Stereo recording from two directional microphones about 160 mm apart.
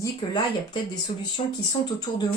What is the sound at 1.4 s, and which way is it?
Speech, 40° left (ahead or behind).